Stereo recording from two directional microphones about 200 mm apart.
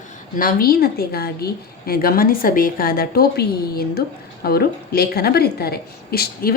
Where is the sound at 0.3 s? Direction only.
45° left (ahead or behind).